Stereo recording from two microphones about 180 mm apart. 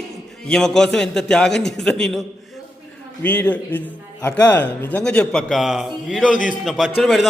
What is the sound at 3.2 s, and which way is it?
A man's voice, 10° left (ahead or behind).